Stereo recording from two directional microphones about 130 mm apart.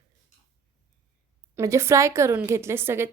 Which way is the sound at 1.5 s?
20° right (ahead or behind).